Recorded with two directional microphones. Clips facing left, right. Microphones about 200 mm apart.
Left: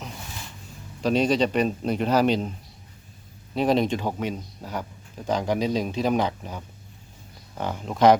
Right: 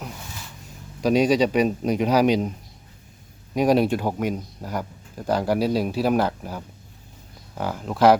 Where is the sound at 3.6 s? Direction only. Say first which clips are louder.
Right 3 dB; 10° right (ahead or behind).